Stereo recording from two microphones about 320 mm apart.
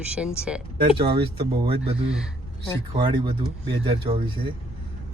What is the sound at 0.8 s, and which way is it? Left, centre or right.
Speech, centre.